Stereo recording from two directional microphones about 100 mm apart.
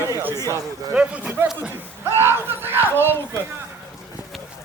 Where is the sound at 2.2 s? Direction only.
20° right (ahead or behind).